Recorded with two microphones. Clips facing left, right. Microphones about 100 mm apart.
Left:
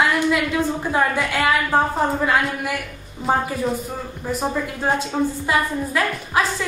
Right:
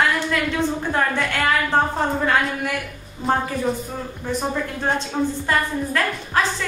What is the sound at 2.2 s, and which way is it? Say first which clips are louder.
Music: even; 5° left (ahead or behind).